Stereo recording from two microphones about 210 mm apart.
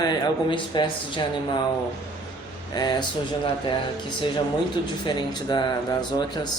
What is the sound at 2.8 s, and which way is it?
Speech, 20° left (ahead or behind).